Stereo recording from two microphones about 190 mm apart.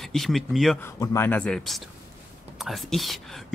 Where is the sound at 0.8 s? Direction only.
15° left (ahead or behind).